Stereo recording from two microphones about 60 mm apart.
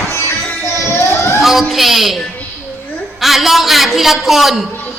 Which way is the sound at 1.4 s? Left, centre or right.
Centre.